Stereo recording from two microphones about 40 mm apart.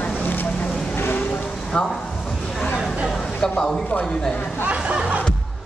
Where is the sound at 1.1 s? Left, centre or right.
Left.